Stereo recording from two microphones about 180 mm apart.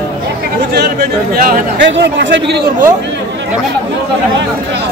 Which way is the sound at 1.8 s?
85° right.